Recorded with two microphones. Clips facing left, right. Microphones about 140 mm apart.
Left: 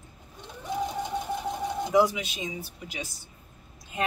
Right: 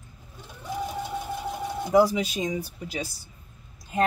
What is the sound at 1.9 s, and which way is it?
Speech, 40° right (ahead or behind).